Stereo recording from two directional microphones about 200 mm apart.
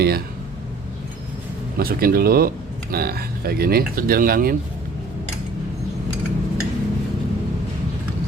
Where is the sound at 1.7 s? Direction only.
50° right (ahead or behind).